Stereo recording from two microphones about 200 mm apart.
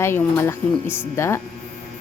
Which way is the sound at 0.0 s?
15° left (ahead or behind).